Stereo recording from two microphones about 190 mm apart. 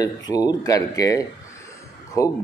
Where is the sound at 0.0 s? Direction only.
20° left (ahead or behind).